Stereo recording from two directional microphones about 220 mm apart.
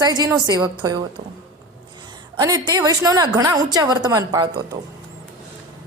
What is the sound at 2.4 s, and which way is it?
A woman's voice, 15° right (ahead or behind).